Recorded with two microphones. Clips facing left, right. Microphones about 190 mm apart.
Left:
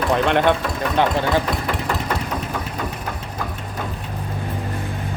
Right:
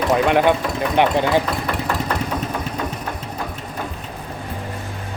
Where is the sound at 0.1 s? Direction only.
5° right (ahead or behind).